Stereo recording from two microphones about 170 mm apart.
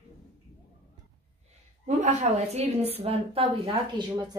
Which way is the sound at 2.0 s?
45° right (ahead or behind).